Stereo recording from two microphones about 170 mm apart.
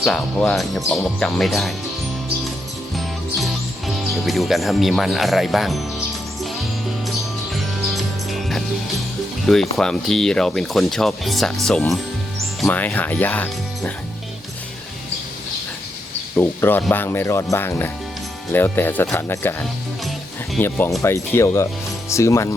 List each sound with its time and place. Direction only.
0.0 s speech: 5° left (ahead or behind)
3.4 s speech: centre (ahead or behind)
7.5 s music: centre (ahead or behind)
9.5 s speech: centre (ahead or behind)
16.3 s speech: 15° left (ahead or behind)